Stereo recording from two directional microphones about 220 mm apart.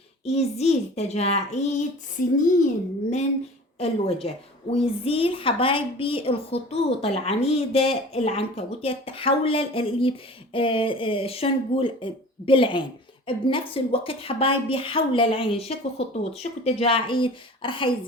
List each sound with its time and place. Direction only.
0.3 s a woman's voice: 30° left (ahead or behind)
3.8 s a woman's voice: 25° left (ahead or behind)